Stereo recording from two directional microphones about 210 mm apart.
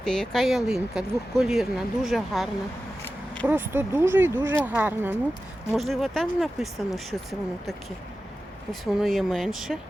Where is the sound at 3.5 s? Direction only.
10° right (ahead or behind).